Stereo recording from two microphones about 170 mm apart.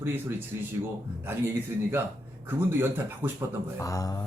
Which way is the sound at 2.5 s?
15° right (ahead or behind).